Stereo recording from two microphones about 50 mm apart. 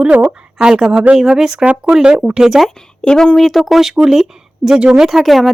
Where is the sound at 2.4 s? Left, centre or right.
Centre.